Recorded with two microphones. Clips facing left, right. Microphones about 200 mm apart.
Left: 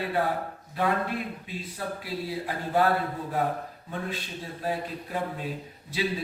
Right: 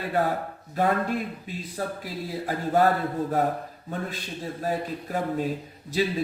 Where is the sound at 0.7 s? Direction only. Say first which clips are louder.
Right 3 dB; 45° right (ahead or behind).